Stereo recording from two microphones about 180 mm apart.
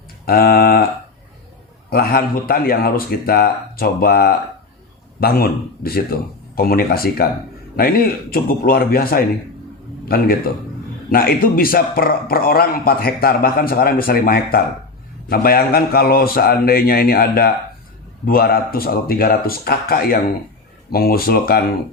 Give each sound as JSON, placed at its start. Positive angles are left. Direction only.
{"t": 0.3, "sound": "a man's voice", "side_deg": 55}
{"t": 1.9, "sound": "a man's voice", "side_deg": 55}
{"t": 11.1, "sound": "a man's voice", "side_deg": 55}